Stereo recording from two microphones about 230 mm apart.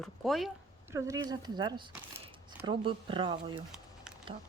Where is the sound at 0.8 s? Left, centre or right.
Centre.